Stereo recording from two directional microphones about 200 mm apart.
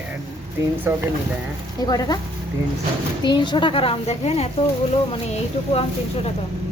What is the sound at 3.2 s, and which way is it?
Speech, 25° left (ahead or behind).